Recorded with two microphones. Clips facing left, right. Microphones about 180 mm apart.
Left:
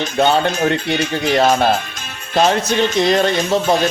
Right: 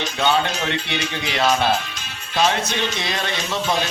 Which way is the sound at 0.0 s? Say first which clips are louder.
Left 5 dB; 50° left (ahead or behind).